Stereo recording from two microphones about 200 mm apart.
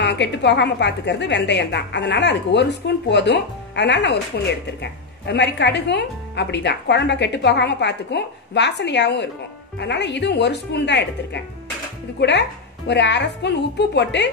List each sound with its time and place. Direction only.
0.0 s a woman's voice: 60° left (ahead or behind)
5.2 s a woman's voice: 55° left (ahead or behind)